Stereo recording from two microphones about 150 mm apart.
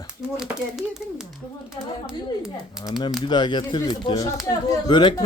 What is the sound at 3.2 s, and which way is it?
Speech, 30° left (ahead or behind).